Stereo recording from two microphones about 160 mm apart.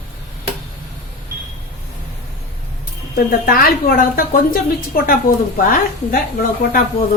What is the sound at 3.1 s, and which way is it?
A woman's voice, 65° left (ahead or behind).